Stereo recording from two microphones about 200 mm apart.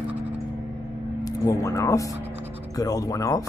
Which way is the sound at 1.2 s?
15° left (ahead or behind).